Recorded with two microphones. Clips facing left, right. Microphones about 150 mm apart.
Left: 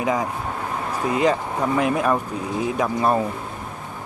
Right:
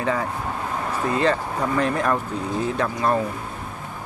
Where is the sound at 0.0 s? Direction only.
15° left (ahead or behind).